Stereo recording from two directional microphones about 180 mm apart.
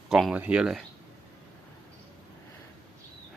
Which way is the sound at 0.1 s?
Centre (ahead or behind).